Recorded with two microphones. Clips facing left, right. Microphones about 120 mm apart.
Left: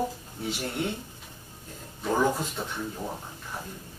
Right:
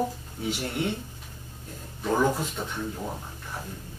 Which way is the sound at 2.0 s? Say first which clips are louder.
Right 1 dB; 5° left (ahead or behind).